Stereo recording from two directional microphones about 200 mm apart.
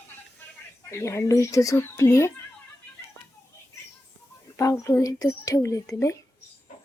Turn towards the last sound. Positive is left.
turn(degrees=15)  # may be behind; listen again after turning